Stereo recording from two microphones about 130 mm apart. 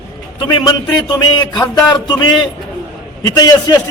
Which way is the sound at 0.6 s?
35° left (ahead or behind).